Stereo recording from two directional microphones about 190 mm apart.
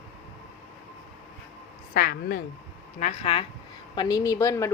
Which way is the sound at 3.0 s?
30° left (ahead or behind).